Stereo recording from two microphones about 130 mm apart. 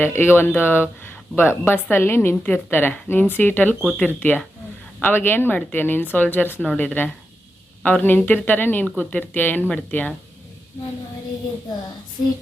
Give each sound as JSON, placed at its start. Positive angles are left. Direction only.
{"t": 0.0, "sound": "speech", "side_deg": 20}